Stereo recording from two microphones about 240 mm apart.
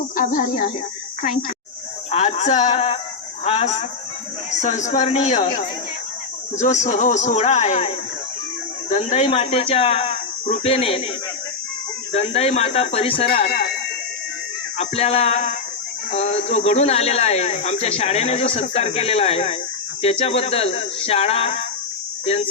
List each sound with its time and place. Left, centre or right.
0.2 s insect: left
2.0 s speech: left
6.6 s speech: left
12.1 s speech: left
13.2 s insect: left
14.8 s speech: left